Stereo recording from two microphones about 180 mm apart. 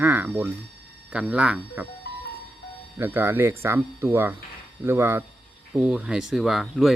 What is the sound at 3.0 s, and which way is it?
Speech, 10° right (ahead or behind).